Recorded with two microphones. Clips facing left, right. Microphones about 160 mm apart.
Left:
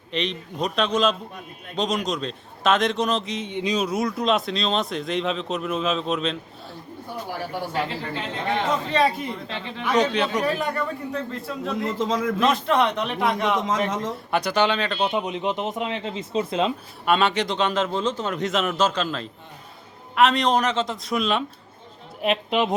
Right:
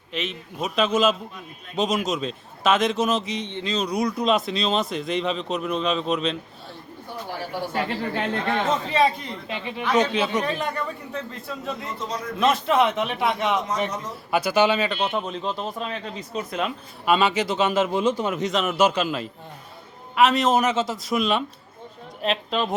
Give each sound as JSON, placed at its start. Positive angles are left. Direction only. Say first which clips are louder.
{"t": 0.1, "sound": "a man's voice", "louder": "left 3 dB", "side_deg": -5}
{"t": 3.5, "sound": "a woman's voice", "louder": "left 4 dB", "side_deg": 15}
{"t": 3.8, "sound": "a man's voice", "louder": "even", "side_deg": 0}
{"t": 8.9, "sound": "a man's voice", "louder": "even", "side_deg": 0}
{"t": 9.5, "sound": "speech", "louder": "right 2 dB", "side_deg": -15}
{"t": 10.0, "sound": "a man's voice", "louder": "left 3 dB", "side_deg": 0}
{"t": 11.8, "sound": "a man's voice", "louder": "left 7 dB", "side_deg": 90}
{"t": 12.4, "sound": "a man's voice", "louder": "right 3 dB", "side_deg": 0}
{"t": 13.7, "sound": "a man's voice", "louder": "left 3 dB", "side_deg": 90}
{"t": 14.3, "sound": "a man's voice", "louder": "right 2 dB", "side_deg": -5}
{"t": 14.9, "sound": "speech", "louder": "left 2 dB", "side_deg": 10}
{"t": 17.1, "sound": "speech", "louder": "even", "side_deg": 0}
{"t": 18.3, "sound": "a man's voice", "louder": "right 1 dB", "side_deg": 0}
{"t": 22.2, "sound": "a woman's voice", "louder": "left 3 dB", "side_deg": 10}